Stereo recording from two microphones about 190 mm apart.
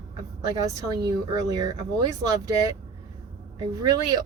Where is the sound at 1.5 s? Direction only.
20° right (ahead or behind).